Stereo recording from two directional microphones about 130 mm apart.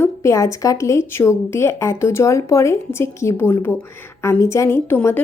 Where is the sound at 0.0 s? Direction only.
20° left (ahead or behind).